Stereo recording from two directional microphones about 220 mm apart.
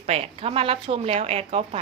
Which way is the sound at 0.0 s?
30° right (ahead or behind).